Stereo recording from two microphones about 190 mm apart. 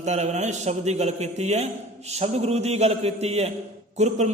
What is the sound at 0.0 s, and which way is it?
A man's voice, 35° right (ahead or behind).